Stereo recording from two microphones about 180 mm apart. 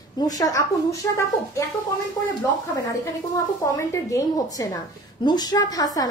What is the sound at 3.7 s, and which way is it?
A woman's voice, 15° left (ahead or behind).